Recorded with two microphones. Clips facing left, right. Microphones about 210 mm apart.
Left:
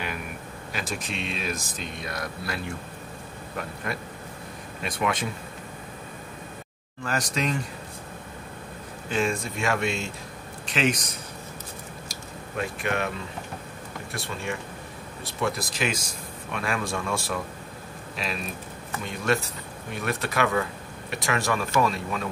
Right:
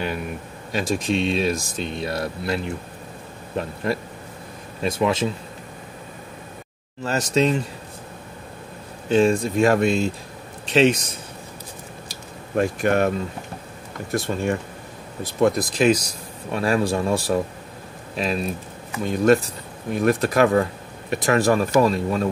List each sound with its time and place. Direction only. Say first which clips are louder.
0.7 s speech: right 11 dB; 30° right (ahead or behind)
5.0 s speech: right 6 dB; 25° right (ahead or behind)
7.0 s speech: right 8 dB; 25° right (ahead or behind)
9.1 s speech: right 9 dB; 35° right (ahead or behind)
12.5 s speech: right 9 dB; 45° right (ahead or behind)
14.1 s speech: right 10 dB; 45° right (ahead or behind)